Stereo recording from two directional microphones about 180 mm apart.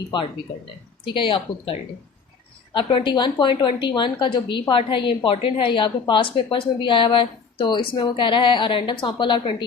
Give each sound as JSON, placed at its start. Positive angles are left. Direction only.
{"t": 1.0, "sound": "a woman's voice", "side_deg": 30}